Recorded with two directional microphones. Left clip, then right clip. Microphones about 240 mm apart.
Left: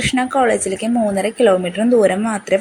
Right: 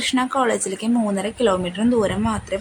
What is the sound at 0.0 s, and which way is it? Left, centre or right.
A woman's voice, centre.